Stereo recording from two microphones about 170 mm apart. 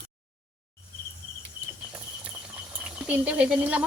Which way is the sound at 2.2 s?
5° right (ahead or behind).